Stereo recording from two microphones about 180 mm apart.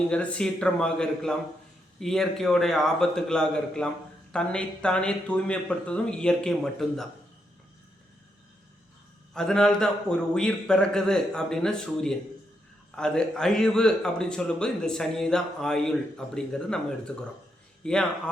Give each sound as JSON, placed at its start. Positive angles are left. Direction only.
{"t": 0.1, "sound": "a man's voice", "side_deg": 5}
{"t": 9.3, "sound": "a man's voice", "side_deg": 5}